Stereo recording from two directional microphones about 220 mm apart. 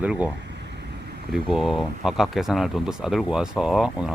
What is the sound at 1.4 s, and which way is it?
Speech, centre (ahead or behind).